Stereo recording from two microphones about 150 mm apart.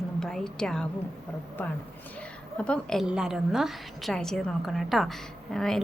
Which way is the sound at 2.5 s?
5° left (ahead or behind).